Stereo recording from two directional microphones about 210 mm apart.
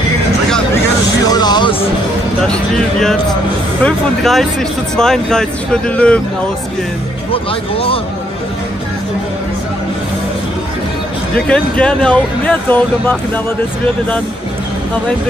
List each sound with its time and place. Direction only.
1.2 s music: 20° left (ahead or behind)
2.4 s speech: 5° left (ahead or behind)
7.7 s speech: 25° left (ahead or behind)
11.3 s speech: 5° left (ahead or behind)